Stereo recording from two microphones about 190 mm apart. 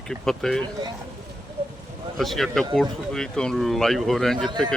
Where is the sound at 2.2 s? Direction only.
Centre (ahead or behind).